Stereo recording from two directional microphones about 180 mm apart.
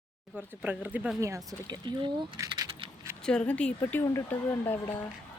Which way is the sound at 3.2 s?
5° left (ahead or behind).